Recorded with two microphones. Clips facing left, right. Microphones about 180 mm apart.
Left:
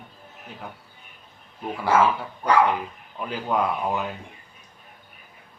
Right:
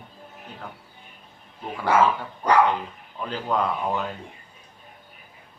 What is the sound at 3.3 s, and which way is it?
Speech, 10° left (ahead or behind).